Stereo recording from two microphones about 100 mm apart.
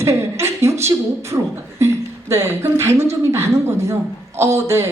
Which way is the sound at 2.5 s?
25° right (ahead or behind).